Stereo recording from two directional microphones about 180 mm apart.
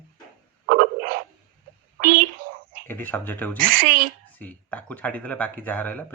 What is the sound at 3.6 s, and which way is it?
Speech, 50° right (ahead or behind).